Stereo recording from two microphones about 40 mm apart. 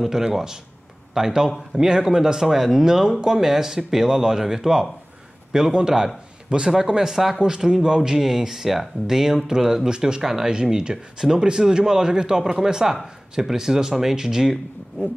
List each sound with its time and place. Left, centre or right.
0.0 s a man's voice: centre
9.8 s a man's voice: centre